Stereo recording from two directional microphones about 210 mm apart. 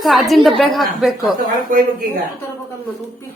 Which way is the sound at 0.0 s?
Centre (ahead or behind).